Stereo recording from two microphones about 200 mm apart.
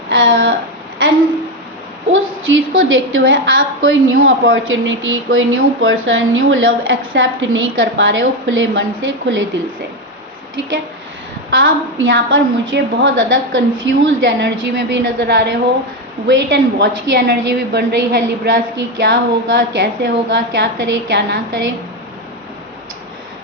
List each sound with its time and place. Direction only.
0.1 s a sound: 60° right (ahead or behind)
2.1 s a woman's voice: 75° right (ahead or behind)
11.5 s a woman's voice: 70° right (ahead or behind)